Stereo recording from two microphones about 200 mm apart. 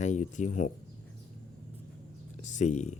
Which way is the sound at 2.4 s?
35° left (ahead or behind).